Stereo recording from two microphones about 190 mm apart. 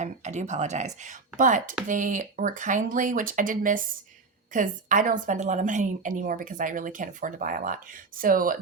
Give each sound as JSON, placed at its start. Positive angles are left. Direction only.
{"t": 0.0, "sound": "a woman's voice", "side_deg": -40}